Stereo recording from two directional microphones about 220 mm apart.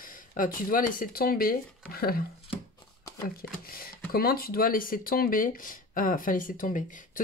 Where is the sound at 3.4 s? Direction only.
45° left (ahead or behind).